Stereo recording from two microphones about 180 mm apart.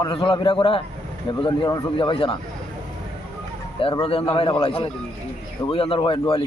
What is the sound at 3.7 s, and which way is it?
A man's voice, 30° left (ahead or behind).